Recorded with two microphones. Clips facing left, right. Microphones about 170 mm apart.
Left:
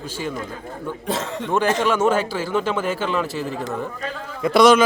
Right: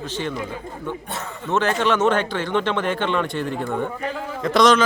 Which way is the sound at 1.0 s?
90° left.